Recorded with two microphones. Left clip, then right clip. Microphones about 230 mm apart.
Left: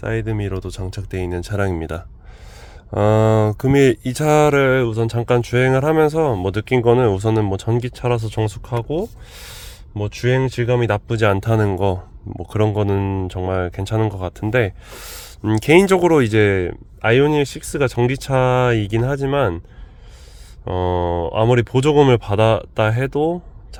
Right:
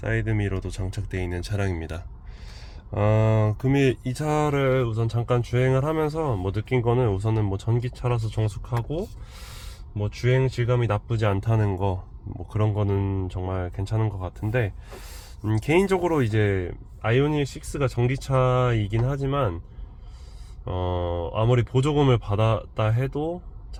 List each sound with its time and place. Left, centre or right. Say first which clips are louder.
0.0 s speech: left 4 dB; left
20.7 s speech: left 8 dB; left